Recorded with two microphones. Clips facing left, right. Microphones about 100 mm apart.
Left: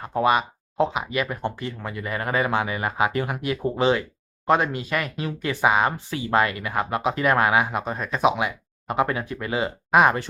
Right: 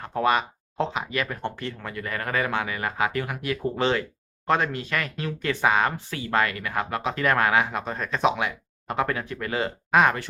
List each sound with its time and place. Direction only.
0.0 s speech: 10° left (ahead or behind)
3.8 s speech: 10° left (ahead or behind)